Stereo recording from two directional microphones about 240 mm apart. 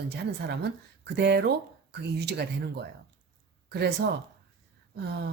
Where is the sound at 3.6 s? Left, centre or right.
Right.